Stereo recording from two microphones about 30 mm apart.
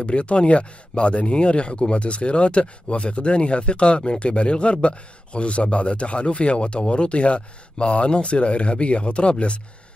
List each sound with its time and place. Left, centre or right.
0.0 s speech: left